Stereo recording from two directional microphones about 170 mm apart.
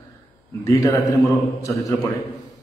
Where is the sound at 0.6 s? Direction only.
15° left (ahead or behind).